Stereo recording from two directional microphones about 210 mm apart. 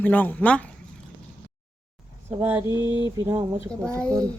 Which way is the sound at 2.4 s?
10° right (ahead or behind).